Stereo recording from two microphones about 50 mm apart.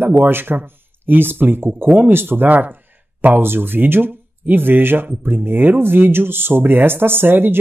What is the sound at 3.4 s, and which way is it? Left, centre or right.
Speech, right.